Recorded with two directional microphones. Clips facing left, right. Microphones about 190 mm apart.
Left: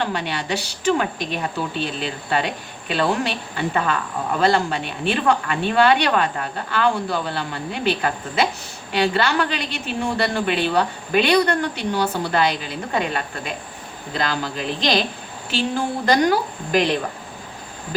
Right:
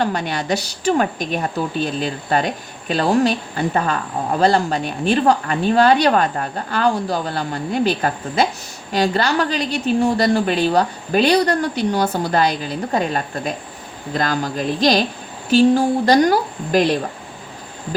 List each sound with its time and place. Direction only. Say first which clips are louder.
0.0 s a woman's voice: right 4 dB; 45° right (ahead or behind)